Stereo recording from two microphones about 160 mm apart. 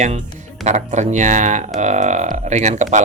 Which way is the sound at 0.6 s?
45° right (ahead or behind).